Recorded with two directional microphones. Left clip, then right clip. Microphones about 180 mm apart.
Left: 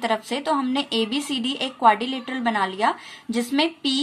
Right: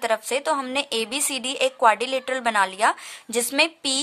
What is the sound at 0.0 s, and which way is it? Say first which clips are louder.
Speech: right 1 dB; 35° right (ahead or behind).